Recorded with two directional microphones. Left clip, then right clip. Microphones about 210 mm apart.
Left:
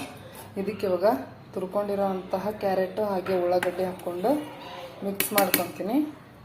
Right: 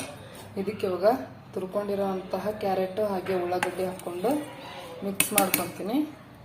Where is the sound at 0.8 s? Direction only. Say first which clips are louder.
Even; 10° left (ahead or behind).